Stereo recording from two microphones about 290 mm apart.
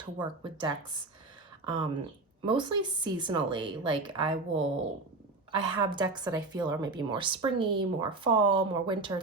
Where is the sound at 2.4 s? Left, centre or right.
Centre.